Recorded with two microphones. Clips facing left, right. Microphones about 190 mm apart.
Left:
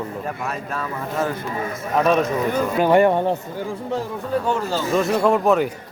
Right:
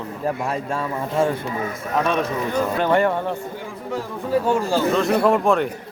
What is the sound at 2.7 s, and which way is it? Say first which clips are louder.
Speech: left 5 dB; 15° left (ahead or behind).